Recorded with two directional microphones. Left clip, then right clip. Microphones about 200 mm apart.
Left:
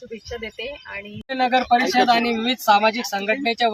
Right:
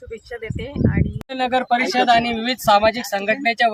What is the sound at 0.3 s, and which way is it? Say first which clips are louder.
Speech: left 2 dB; 25° right (ahead or behind).